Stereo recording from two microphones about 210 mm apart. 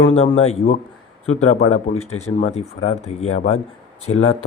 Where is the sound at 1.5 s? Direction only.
30° left (ahead or behind).